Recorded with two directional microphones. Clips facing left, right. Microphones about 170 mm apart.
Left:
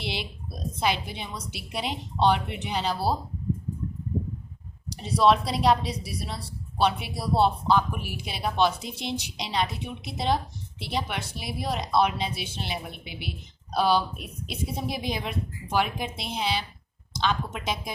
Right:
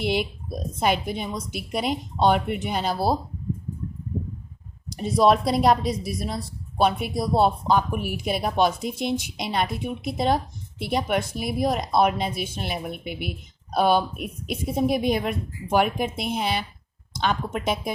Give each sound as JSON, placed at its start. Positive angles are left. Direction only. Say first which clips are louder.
{"t": 0.0, "sound": "a woman's voice", "louder": "right 9 dB", "side_deg": -50}
{"t": 4.9, "sound": "a woman's voice", "louder": "right 3 dB", "side_deg": -50}